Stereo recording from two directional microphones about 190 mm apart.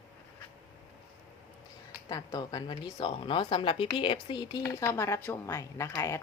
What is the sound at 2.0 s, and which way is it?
A woman's voice, 20° left (ahead or behind).